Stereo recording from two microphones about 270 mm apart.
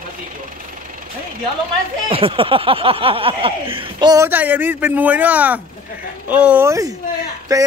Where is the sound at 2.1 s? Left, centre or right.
Centre.